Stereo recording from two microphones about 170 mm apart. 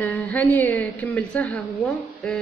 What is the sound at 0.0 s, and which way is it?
A woman's voice, 10° left (ahead or behind).